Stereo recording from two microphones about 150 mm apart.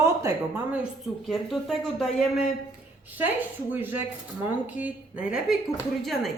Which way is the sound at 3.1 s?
10° right (ahead or behind).